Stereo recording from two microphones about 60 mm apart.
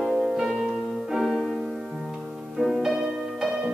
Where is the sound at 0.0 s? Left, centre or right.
Centre.